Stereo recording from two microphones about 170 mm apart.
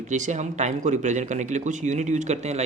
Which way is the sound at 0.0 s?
45° right (ahead or behind).